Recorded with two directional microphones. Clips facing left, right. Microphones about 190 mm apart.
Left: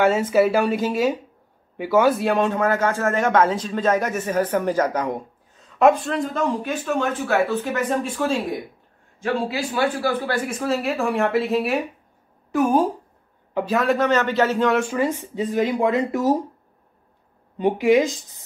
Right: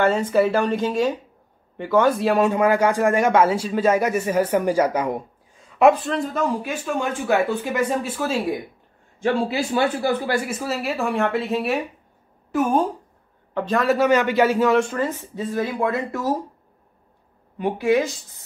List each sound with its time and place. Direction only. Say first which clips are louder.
0.0 s speech: left 1 dB; 5° left (ahead or behind)
9.2 s a man's voice: right 2 dB; 25° right (ahead or behind)
10.5 s a woman's voice: left 2 dB; 5° right (ahead or behind)
13.8 s speech: right 3 dB; 10° right (ahead or behind)
14.7 s speech: right 1 dB; 10° left (ahead or behind)
17.6 s speech: left 3 dB; 15° left (ahead or behind)